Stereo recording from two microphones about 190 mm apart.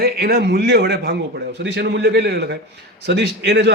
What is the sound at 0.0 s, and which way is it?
Speech, 55° right (ahead or behind).